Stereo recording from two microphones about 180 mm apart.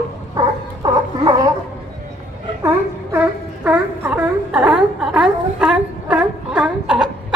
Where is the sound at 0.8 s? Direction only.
20° right (ahead or behind).